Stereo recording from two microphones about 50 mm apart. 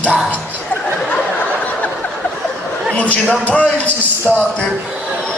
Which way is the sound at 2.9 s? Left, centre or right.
Left.